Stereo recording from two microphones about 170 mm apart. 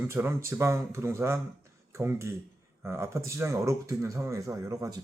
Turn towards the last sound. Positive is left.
turn(degrees=-20)  # may be behind; listen again after turning